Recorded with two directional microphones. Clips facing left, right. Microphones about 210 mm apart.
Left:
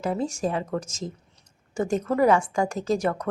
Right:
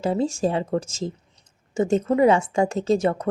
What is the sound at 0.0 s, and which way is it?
A woman's voice, 30° right (ahead or behind).